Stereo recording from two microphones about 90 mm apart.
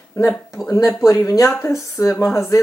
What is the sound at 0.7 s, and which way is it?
Speech, 35° left (ahead or behind).